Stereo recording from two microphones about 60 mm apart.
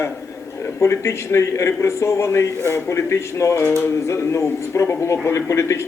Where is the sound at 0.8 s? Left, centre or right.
Left.